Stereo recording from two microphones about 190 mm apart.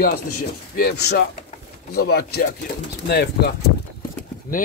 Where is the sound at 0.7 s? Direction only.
60° left (ahead or behind).